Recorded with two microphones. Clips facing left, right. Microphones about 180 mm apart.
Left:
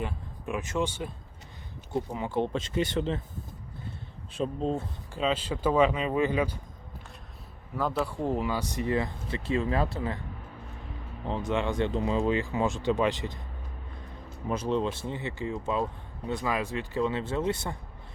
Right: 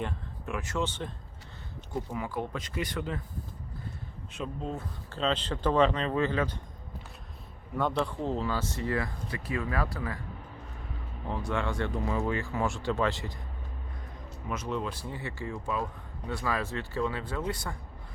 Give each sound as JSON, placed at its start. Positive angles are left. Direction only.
{"t": 0.4, "sound": "speech", "side_deg": 20}
{"t": 1.9, "sound": "speech", "side_deg": 25}
{"t": 4.3, "sound": "speech", "side_deg": 30}
{"t": 5.0, "sound": "speech", "side_deg": 10}
{"t": 7.8, "sound": "speech", "side_deg": 5}
{"t": 11.3, "sound": "speech", "side_deg": 20}
{"t": 14.4, "sound": "speech", "side_deg": 30}